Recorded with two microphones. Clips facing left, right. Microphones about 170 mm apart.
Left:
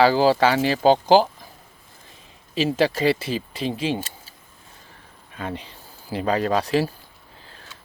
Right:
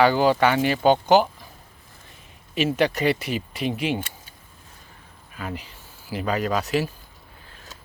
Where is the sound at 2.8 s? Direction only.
30° left (ahead or behind).